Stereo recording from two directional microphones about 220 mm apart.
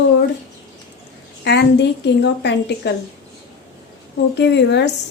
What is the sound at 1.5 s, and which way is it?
A woman's voice, 50° left (ahead or behind).